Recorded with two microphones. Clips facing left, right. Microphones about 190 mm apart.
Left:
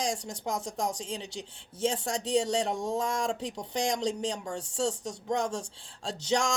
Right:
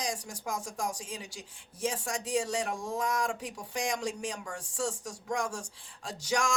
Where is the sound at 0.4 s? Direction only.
25° left (ahead or behind).